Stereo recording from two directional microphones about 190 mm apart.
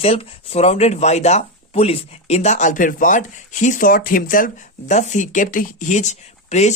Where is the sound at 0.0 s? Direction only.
30° left (ahead or behind).